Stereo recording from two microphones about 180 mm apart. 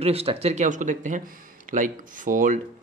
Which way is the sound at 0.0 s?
35° right (ahead or behind).